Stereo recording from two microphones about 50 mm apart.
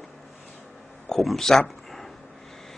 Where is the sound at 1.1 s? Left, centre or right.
Centre.